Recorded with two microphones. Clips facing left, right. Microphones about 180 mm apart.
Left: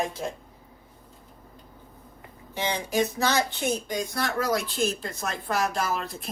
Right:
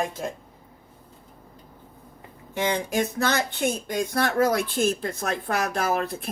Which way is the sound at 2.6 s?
55° right (ahead or behind).